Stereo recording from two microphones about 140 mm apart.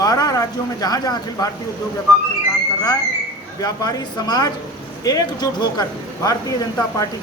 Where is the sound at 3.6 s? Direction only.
25° left (ahead or behind).